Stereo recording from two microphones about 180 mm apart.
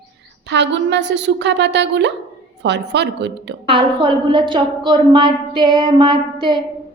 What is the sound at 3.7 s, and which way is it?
A woman's voice, 30° right (ahead or behind).